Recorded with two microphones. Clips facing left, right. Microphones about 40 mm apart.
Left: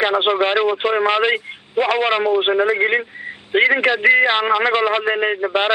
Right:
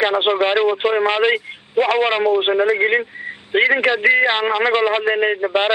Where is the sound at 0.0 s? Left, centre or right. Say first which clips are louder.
Even; centre.